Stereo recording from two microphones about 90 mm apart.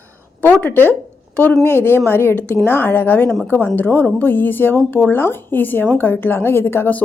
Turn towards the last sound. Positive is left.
turn(degrees=20)  # may be behind; listen again after turning